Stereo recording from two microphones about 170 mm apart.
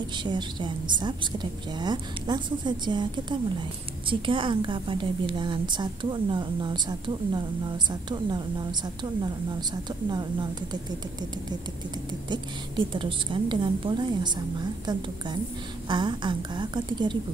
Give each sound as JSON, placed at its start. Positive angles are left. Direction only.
{"t": 0.2, "sound": "a woman's voice", "side_deg": -25}
{"t": 12.3, "sound": "a woman's voice", "side_deg": -25}